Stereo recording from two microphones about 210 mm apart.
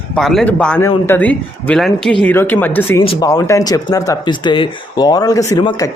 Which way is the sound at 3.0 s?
25° left (ahead or behind).